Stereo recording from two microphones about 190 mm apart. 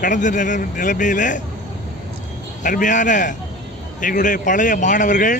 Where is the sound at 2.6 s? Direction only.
40° left (ahead or behind).